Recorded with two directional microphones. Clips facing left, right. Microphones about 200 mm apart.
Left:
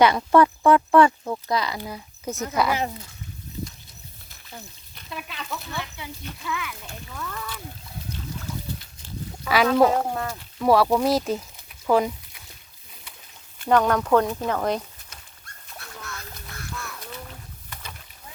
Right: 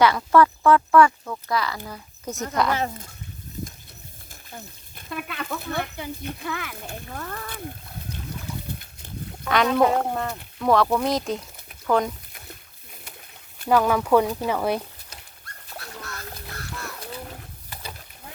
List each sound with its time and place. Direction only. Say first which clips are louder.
0.0 s speech: left 1 dB; 20° left (ahead or behind)
1.9 s speech: left 2 dB; 5° left (ahead or behind)
4.9 s speech: right 4 dB; 50° right (ahead or behind)
6.8 s speech: right 2 dB; 55° right (ahead or behind)
9.4 s speech: left 1 dB; 5° left (ahead or behind)
13.7 s speech: even; 5° right (ahead or behind)
17.0 s splash: right 3 dB; 30° right (ahead or behind)